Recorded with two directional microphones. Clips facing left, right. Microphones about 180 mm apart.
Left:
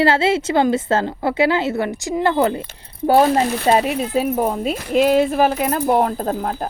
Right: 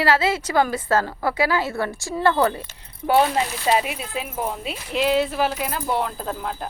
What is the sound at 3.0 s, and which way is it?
Speech, 40° left (ahead or behind).